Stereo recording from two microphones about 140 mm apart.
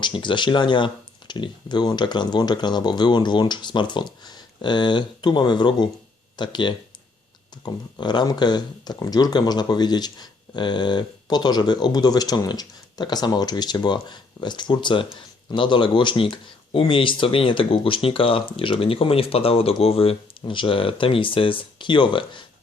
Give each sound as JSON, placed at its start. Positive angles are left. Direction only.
{"t": 0.0, "sound": "speech", "side_deg": 35}